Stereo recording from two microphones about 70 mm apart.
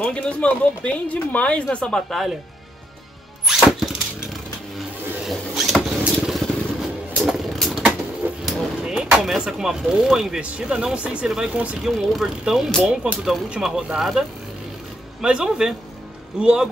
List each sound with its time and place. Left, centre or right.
0.0 s speech: centre
3.4 s a sound: centre
6.2 s vehicle: centre
8.5 s speech: centre
11.5 s speech: centre
11.8 s speech: centre
15.2 s speech: centre